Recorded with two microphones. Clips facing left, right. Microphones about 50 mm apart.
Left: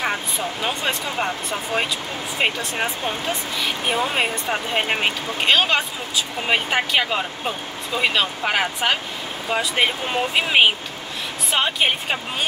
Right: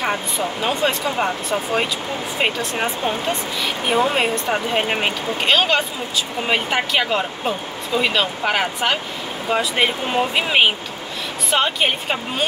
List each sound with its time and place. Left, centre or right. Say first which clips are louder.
0.0 s speech: right 2 dB; centre